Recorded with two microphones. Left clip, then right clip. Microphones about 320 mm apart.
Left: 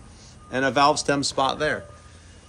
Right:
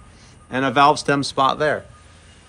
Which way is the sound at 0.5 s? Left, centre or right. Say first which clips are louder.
Right 4 dB; right.